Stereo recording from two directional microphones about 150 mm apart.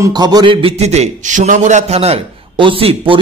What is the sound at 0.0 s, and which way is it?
A man's voice, 25° right (ahead or behind).